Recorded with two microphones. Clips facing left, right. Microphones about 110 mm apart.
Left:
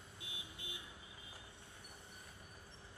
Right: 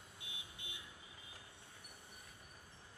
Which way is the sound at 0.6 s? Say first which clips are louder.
Left 4 dB; 30° left (ahead or behind).